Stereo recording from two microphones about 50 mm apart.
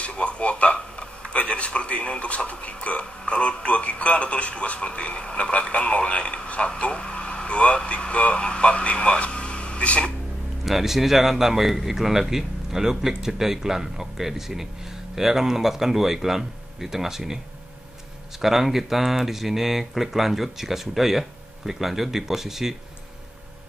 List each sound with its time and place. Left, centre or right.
0.0 s speech: left
10.6 s speech: centre
18.4 s speech: centre